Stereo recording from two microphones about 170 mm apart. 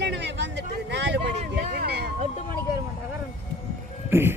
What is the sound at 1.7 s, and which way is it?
Speech, 70° right (ahead or behind).